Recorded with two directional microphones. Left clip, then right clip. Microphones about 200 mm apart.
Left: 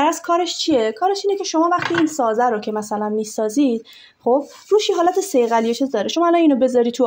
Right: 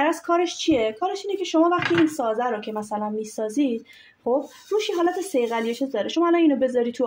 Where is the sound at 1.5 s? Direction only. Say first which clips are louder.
Even; 35° left (ahead or behind).